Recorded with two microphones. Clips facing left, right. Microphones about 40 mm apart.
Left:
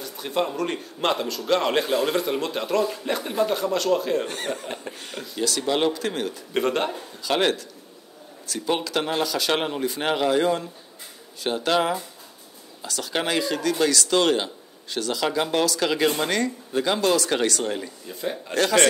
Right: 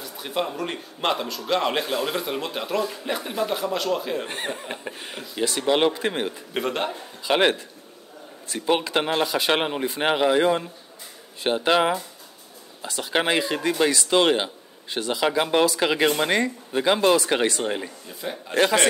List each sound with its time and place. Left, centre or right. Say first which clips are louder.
0.0 s a man's voice: left 2 dB; centre
4.3 s speech: left 1 dB; right
4.6 s a sound: even; centre
5.4 s speech: right 2 dB; right
6.5 s a man's voice: left 4 dB; centre
7.2 s speech: right 2 dB; right
18.0 s a man's voice: left 3 dB; centre